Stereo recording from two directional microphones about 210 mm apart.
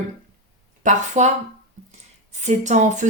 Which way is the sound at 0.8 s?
35° right (ahead or behind).